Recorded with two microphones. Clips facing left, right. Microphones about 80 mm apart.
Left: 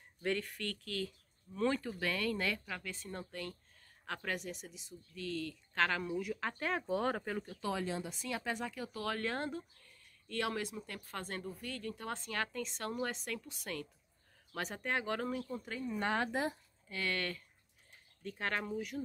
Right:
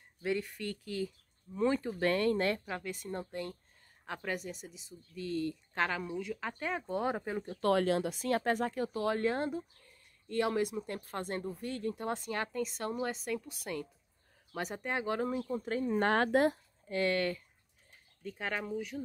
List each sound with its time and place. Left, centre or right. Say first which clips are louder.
0.2 s speech: right 2 dB; centre
2.0 s speech: right 7 dB; right
4.0 s speech: right 2 dB; centre
5.1 s speech: right 5 dB; right
6.1 s speech: even; centre
7.2 s speech: right 3 dB; centre
7.6 s speech: right 10 dB; right
8.2 s speech: right 8 dB; right
8.9 s speech: right 5 dB; right
12.6 s speech: right 3 dB; centre
15.4 s speech: right 7 dB; right
16.9 s speech: right 7 dB; right
18.2 s speech: right 1 dB; centre